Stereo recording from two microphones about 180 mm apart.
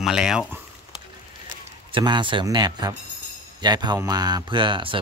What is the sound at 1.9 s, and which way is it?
Speech, 25° right (ahead or behind).